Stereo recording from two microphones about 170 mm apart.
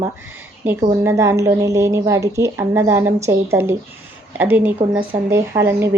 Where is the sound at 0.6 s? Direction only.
15° right (ahead or behind).